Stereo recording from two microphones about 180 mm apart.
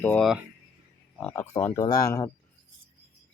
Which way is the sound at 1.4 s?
15° left (ahead or behind).